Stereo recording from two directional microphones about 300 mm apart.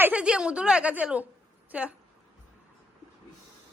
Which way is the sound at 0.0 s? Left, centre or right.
Centre.